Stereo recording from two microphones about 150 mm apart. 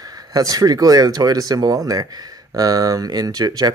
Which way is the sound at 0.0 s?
25° right (ahead or behind).